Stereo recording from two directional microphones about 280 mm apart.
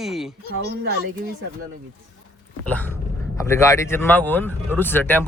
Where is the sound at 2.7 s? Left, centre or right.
Centre.